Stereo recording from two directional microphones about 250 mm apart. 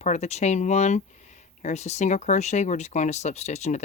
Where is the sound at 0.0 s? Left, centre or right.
Left.